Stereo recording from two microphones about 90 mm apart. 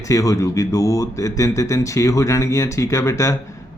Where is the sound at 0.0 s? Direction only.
35° left (ahead or behind).